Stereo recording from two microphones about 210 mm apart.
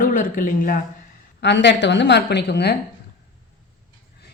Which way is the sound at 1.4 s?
55° left (ahead or behind).